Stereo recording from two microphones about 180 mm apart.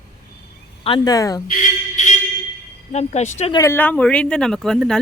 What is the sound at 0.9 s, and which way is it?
Speech, 25° left (ahead or behind).